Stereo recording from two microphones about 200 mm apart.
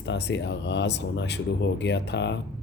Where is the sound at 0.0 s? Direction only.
60° left (ahead or behind).